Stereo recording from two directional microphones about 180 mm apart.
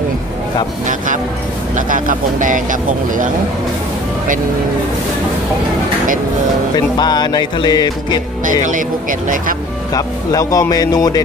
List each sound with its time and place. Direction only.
0.8 s speech: 45° right (ahead or behind)
7.0 s speech: 25° left (ahead or behind)
9.9 s speech: 20° left (ahead or behind)